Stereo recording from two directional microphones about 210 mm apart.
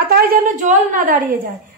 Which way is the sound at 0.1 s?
45° right (ahead or behind).